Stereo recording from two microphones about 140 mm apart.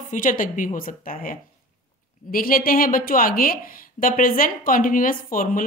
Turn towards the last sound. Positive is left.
turn(degrees=80)